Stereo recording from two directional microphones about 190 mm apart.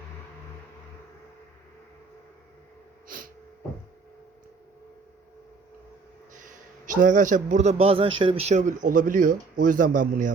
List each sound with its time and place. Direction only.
6.8 s a man's voice: 45° right (ahead or behind)